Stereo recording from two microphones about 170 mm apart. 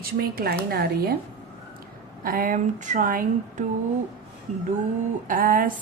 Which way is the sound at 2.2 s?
55° right (ahead or behind).